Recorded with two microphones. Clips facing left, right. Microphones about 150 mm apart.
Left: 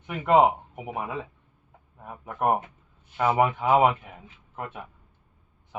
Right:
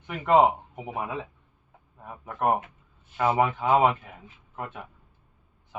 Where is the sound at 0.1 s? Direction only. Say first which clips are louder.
Even; 10° left (ahead or behind).